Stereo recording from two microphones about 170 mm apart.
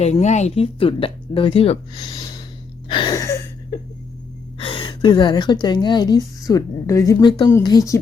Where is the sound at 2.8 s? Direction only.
30° left (ahead or behind).